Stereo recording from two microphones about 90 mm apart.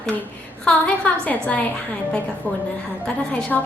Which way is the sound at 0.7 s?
15° left (ahead or behind).